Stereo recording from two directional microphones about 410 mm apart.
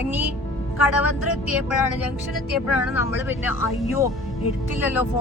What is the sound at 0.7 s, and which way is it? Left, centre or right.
Speech, left.